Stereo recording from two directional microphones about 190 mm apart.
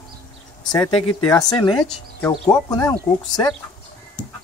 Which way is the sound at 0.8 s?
20° left (ahead or behind).